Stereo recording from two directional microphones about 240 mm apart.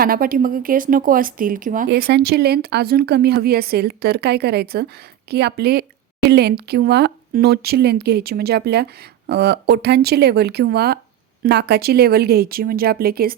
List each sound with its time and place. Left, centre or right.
0.0 s speech: right